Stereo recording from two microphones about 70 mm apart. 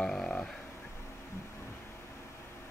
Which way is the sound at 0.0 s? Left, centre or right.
Centre.